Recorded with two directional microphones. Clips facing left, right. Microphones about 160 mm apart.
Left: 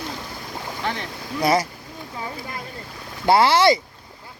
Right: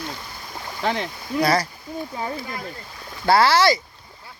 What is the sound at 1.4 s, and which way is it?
Speech, 20° left (ahead or behind).